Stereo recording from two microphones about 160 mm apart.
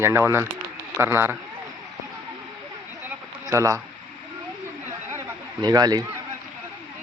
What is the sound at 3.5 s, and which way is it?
Speech, 20° right (ahead or behind).